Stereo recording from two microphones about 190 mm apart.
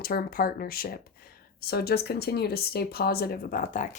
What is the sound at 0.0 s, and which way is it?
Speech, 50° left (ahead or behind).